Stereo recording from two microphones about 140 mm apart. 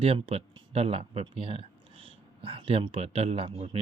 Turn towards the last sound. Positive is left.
turn(degrees=-45)  # may be behind; listen again after turning